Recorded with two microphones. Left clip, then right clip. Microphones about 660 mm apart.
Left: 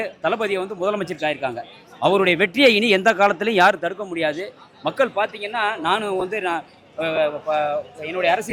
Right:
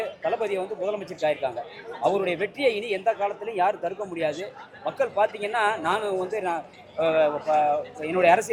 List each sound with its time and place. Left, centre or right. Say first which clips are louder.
0.0 s a man's voice: left 4 dB; left
2.0 s a man's voice: left 7 dB; left